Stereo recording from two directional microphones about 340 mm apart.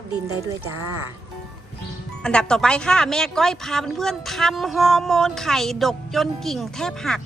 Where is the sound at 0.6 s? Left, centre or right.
Right.